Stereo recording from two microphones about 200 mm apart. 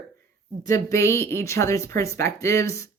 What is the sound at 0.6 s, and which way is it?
Speech, 15° left (ahead or behind).